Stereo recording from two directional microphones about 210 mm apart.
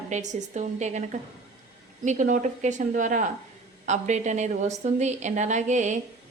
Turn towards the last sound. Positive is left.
turn(degrees=-35)  # may be behind; listen again after turning